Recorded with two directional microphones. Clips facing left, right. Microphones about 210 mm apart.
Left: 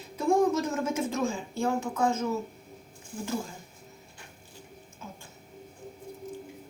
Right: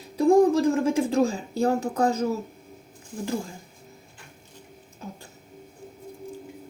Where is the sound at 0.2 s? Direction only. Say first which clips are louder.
Right 7 dB; 35° right (ahead or behind).